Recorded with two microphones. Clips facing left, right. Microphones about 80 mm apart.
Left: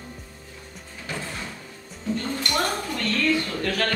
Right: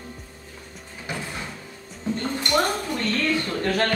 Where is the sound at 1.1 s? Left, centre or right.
Centre.